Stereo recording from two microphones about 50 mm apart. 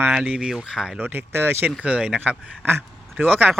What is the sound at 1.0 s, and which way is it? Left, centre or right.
Speech, right.